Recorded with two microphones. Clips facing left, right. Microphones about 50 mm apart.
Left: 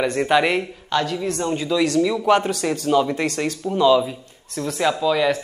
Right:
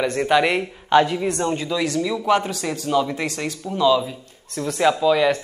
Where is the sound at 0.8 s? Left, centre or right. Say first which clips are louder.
Right 8 dB; right.